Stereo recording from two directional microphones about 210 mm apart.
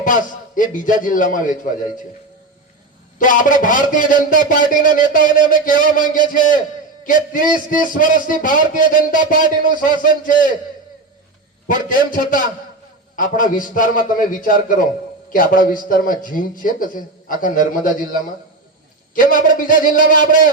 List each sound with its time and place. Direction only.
0.0 s a man's voice: 40° left (ahead or behind)
3.2 s a man's voice: 40° left (ahead or behind)
9.1 s speech: 20° right (ahead or behind)
9.6 s a man's voice: 40° left (ahead or behind)
11.7 s a man's voice: 40° left (ahead or behind)
19.1 s a man's voice: 40° left (ahead or behind)